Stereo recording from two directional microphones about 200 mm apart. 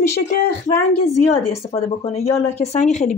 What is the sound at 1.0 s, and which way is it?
Speech, 30° left (ahead or behind).